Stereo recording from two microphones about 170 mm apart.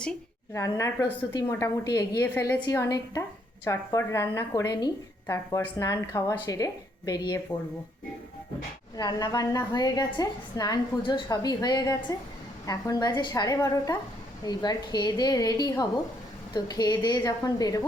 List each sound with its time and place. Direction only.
0.5 s a woman's voice: 15° left (ahead or behind)
9.0 s a woman's voice: 25° left (ahead or behind)